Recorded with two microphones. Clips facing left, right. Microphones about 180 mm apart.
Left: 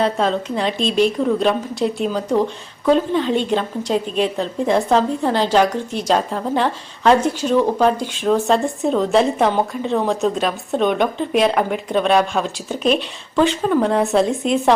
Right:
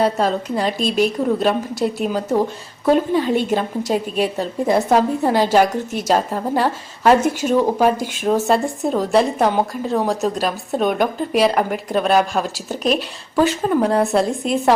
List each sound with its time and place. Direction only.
0.0 s a woman's voice: centre (ahead or behind)